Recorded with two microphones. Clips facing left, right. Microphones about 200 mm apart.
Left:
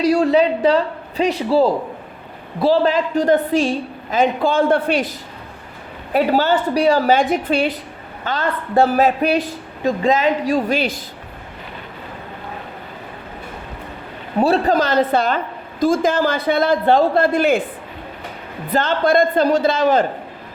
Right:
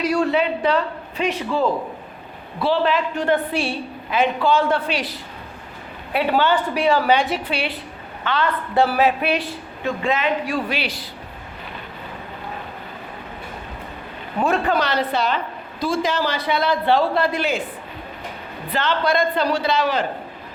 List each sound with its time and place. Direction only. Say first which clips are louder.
0.0 s a man's voice: left 5 dB; 35° left (ahead or behind); by 5.1 s 50° left (ahead or behind)
6.1 s a woman's voice: left 3 dB; 40° left (ahead or behind)
14.3 s a woman's voice: left 4 dB; 35° left (ahead or behind); by 17.6 s 55° left (ahead or behind)
18.7 s a woman's voice: left 5 dB; 45° left (ahead or behind)